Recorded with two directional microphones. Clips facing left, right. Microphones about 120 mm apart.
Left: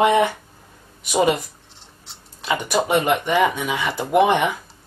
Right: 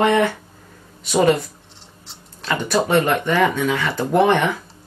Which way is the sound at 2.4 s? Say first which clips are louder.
Right 1 dB; 10° left (ahead or behind).